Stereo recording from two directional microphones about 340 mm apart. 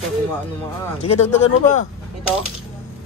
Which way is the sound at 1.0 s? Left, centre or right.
Centre.